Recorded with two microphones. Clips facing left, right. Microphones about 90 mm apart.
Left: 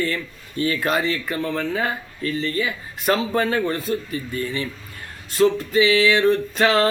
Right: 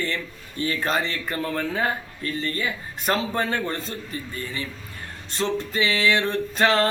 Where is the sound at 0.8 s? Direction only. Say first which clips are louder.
Left 3 dB; 10° left (ahead or behind).